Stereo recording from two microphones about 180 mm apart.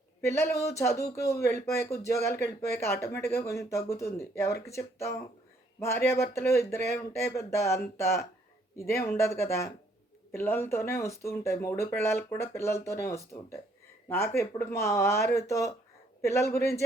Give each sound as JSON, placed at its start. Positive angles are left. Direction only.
{"t": 0.2, "sound": "speech", "side_deg": 15}